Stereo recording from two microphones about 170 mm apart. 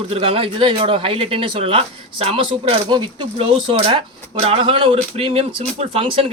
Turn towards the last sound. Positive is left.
turn(degrees=-35)  # may be behind; listen again after turning